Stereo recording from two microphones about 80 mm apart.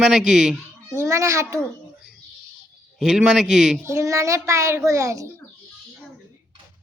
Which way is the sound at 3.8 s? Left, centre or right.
Right.